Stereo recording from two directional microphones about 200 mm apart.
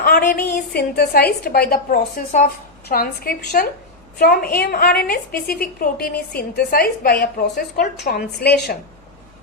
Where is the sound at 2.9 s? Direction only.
50° left (ahead or behind).